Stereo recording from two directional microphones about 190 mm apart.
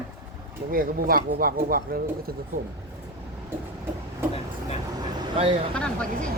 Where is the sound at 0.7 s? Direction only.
50° right (ahead or behind).